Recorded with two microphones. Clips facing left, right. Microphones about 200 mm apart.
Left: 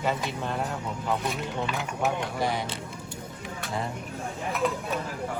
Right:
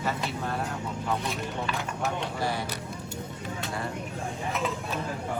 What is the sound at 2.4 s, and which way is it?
Speech, 20° left (ahead or behind).